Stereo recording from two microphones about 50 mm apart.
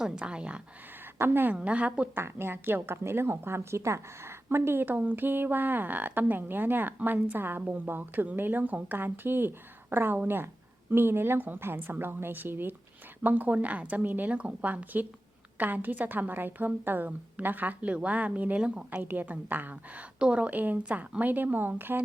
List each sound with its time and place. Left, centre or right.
0.0 s speech: right
1.2 s speech: right
1.5 s speech: right
2.1 s a woman's voice: right
4.9 s a woman's voice: right
19.0 s a woman's voice: right
20.1 s speech: right
20.6 s a woman's voice: right